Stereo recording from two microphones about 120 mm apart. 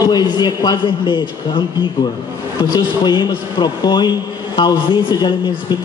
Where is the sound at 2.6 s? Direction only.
35° left (ahead or behind).